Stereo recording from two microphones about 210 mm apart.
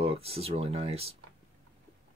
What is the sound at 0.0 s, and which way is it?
Speech, 30° right (ahead or behind).